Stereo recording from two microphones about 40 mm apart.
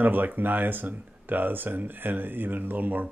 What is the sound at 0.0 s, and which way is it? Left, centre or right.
Speech, right.